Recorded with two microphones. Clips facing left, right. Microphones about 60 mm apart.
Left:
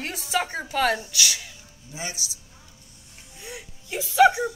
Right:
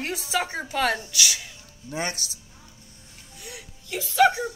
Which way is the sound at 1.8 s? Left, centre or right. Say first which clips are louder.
Right 5 dB; right.